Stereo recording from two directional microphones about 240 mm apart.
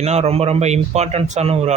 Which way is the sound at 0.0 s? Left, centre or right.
Right.